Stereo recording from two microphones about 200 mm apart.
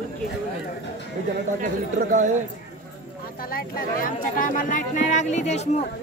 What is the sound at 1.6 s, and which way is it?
Speech, 40° right (ahead or behind).